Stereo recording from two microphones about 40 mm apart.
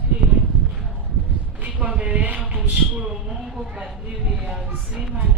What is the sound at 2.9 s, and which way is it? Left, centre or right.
Speech, centre.